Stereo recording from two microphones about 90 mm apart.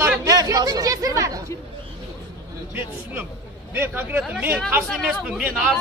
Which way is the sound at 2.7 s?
20° right (ahead or behind).